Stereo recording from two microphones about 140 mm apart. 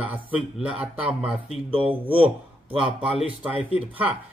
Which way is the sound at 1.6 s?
40° right (ahead or behind).